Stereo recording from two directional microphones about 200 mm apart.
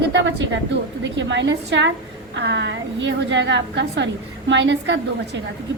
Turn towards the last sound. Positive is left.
turn(degrees=-60)  # may be behind; listen again after turning